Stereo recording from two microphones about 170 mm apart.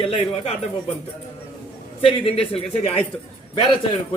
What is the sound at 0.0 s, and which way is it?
Speech, 35° left (ahead or behind).